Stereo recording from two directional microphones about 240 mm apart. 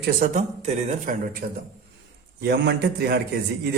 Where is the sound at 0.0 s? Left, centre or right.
Right.